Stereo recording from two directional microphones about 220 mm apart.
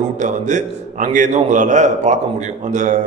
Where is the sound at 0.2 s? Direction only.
35° right (ahead or behind).